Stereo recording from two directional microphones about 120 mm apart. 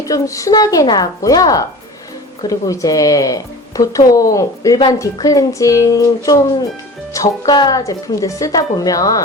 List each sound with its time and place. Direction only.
0.0 s a woman's voice: 25° left (ahead or behind)